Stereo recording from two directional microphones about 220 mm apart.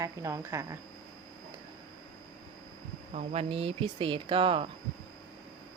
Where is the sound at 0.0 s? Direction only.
15° right (ahead or behind).